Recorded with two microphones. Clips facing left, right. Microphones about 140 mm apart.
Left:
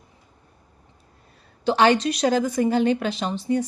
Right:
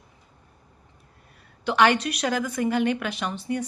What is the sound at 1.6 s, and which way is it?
A woman's voice, 30° left (ahead or behind).